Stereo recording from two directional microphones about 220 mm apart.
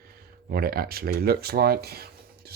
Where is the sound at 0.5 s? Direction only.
45° right (ahead or behind).